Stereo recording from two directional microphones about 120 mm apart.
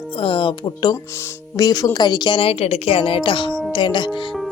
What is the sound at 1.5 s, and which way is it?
Speech, 35° left (ahead or behind).